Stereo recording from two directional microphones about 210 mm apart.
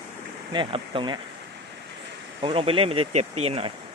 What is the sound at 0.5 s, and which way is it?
Speech, 25° right (ahead or behind).